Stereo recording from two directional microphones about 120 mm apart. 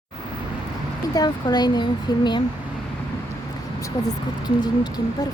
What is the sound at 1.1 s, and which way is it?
Speech, 35° left (ahead or behind).